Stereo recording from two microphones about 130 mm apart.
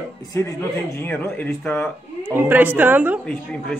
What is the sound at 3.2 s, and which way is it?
Speech, 5° left (ahead or behind).